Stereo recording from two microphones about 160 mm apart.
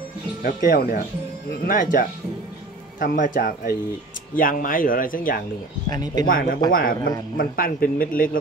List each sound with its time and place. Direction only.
0.4 s speech: 60° left (ahead or behind)